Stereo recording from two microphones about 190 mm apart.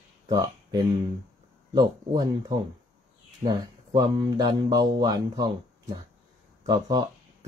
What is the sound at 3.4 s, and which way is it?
Speech, 25° right (ahead or behind).